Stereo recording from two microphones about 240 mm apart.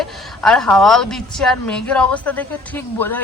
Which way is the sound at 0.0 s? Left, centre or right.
Centre.